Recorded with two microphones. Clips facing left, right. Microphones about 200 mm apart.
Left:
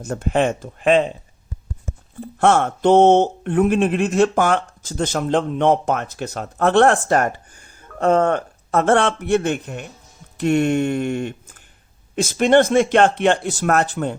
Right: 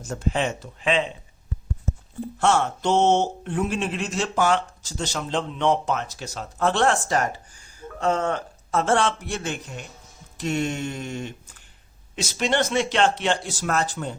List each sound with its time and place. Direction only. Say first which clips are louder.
0.0 s speech: left 6 dB; 60° left (ahead or behind)
2.4 s speech: left 6 dB; 55° left (ahead or behind)